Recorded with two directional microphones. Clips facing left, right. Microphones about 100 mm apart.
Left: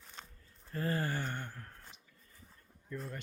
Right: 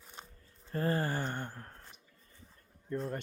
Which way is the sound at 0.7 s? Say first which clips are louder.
Right 3 dB; 35° right (ahead or behind).